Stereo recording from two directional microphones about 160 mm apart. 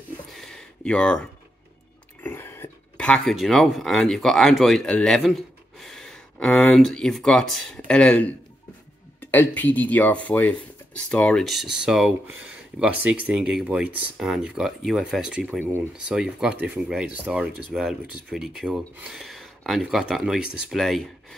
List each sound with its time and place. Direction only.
0.3 s a sound: centre (ahead or behind)
2.2 s speech: 15° left (ahead or behind)
9.2 s rub: 10° left (ahead or behind)